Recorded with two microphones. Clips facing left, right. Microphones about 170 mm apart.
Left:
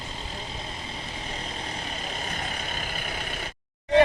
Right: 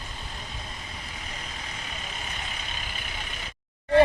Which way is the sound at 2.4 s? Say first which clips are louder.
Left 5 dB; 45° left (ahead or behind).